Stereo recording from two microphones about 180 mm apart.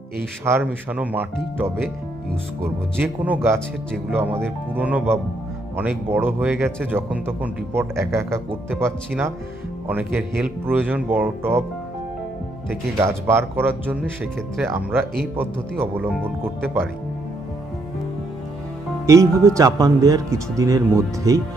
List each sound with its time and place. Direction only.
0.4 s speech: 10° right (ahead or behind)
3.0 s speech: 10° right (ahead or behind)
13.0 s speech: 15° right (ahead or behind)
19.0 s speech: 15° right (ahead or behind)